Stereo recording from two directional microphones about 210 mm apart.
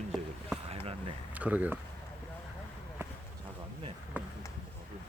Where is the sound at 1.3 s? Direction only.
5° right (ahead or behind).